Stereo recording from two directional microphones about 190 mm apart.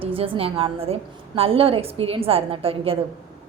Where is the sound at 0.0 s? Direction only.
30° right (ahead or behind).